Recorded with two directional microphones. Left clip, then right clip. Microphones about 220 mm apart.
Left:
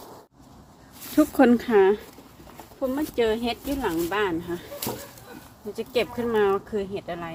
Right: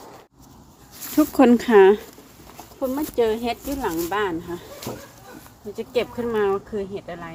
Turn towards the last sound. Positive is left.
turn(degrees=-10)  # may be behind; listen again after turning